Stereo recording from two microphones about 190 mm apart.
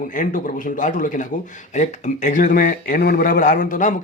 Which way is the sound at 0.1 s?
45° left (ahead or behind).